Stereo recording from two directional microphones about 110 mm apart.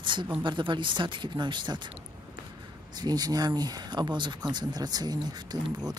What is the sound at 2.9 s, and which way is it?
Speech, 40° right (ahead or behind).